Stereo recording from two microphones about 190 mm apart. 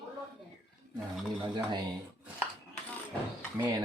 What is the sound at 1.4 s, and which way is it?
Speech, 25° right (ahead or behind).